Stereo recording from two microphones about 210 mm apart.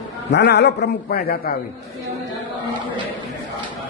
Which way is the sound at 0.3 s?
55° left (ahead or behind).